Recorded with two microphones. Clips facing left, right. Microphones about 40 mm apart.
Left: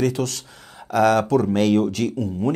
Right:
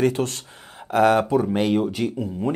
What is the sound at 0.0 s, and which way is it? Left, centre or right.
Speech, right.